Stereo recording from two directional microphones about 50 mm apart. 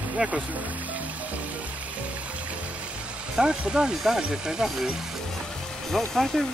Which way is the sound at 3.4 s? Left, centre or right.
Centre.